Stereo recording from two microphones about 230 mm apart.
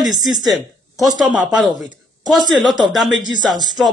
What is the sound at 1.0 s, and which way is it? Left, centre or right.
Speech, centre.